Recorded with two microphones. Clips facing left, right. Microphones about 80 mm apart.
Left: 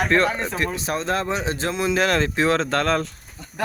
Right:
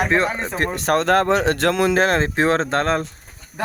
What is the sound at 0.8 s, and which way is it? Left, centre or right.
Speech, right.